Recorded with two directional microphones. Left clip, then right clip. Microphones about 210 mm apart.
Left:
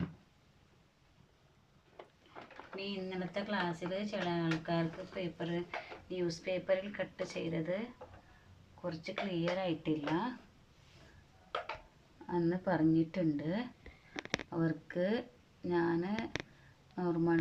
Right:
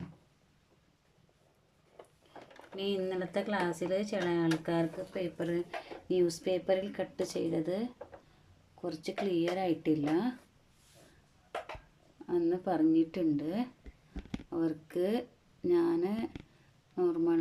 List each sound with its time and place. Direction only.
2.7 s speech: 35° right (ahead or behind)
8.8 s speech: 25° right (ahead or behind)
12.3 s a woman's voice: 15° right (ahead or behind)
14.2 s a sound: 35° left (ahead or behind)
14.5 s speech: 15° right (ahead or behind)